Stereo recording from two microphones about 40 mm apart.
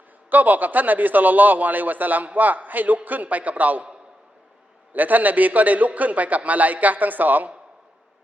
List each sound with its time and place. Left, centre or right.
0.3 s a man's voice: right
4.9 s a man's voice: right